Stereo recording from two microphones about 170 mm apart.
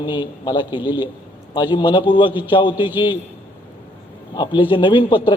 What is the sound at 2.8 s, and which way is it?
Speech, 10° right (ahead or behind).